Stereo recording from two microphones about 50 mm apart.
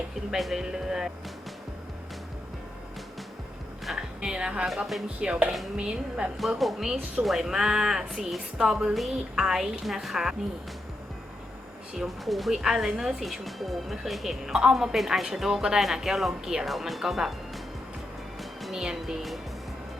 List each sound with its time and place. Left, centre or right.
0.3 s speech: centre
3.9 s a woman's voice: centre
6.6 s speech: centre
11.9 s speech: centre